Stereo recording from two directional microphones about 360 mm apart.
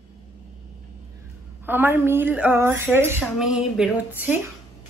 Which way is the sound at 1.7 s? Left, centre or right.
Centre.